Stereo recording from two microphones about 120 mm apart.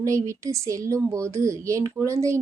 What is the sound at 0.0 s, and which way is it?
A woman's voice, 25° right (ahead or behind).